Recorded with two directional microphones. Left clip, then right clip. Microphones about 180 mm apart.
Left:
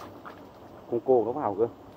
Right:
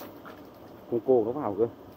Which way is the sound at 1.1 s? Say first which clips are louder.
Left 1 dB; 40° right (ahead or behind).